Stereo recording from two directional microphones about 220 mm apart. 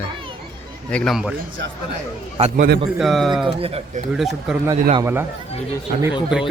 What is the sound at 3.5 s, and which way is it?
Speech, 25° right (ahead or behind).